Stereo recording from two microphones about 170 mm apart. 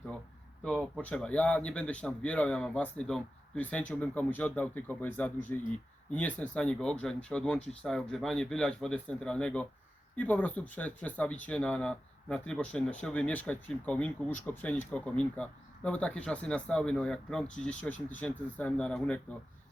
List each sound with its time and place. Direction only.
0.6 s speech: 5° left (ahead or behind)